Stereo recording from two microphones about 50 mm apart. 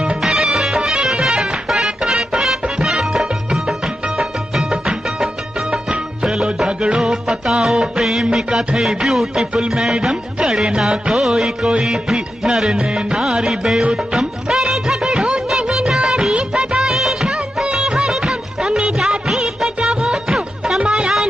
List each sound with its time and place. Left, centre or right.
0.2 s music: centre
13.8 s music of bollywood: centre
20.2 s music: centre